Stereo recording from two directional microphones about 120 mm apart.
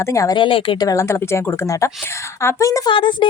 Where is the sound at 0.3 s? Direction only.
45° left (ahead or behind).